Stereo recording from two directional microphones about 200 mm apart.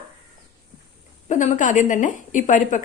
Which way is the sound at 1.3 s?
40° left (ahead or behind).